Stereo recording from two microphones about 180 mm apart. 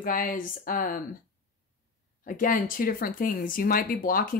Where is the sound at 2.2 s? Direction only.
50° left (ahead or behind).